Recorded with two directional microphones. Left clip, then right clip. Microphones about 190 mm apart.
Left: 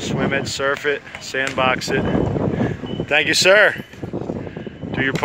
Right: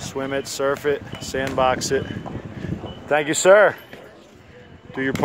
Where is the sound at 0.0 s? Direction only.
15° right (ahead or behind).